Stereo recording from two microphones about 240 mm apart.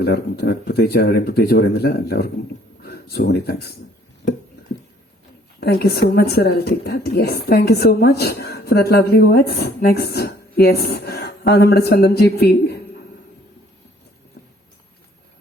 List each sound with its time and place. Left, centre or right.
0.0 s speech: left
5.5 s speech: left